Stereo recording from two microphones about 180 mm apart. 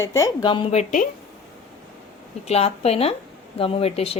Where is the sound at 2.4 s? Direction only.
35° left (ahead or behind).